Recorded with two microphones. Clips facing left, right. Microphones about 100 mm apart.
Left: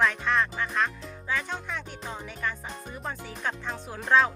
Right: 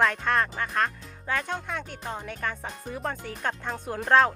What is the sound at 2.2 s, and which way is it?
Speech, 55° right (ahead or behind).